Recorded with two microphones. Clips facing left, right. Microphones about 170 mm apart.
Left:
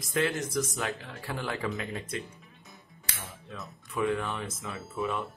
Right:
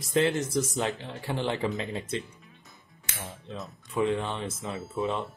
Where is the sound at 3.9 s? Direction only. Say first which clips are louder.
Right 2 dB; 25° right (ahead or behind).